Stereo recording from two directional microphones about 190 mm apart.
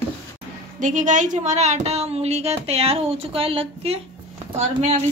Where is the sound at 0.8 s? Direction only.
40° right (ahead or behind).